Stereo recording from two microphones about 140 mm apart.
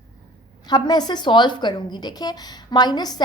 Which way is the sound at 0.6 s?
30° left (ahead or behind).